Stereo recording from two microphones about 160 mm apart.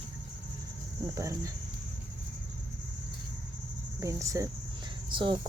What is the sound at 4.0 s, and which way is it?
Cricket, 20° right (ahead or behind).